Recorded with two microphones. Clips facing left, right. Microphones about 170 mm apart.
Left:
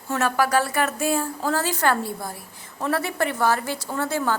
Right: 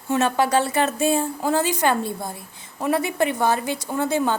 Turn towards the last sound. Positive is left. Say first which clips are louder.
# right 3 dB
turn(degrees=-20)  # may be behind; listen again after turning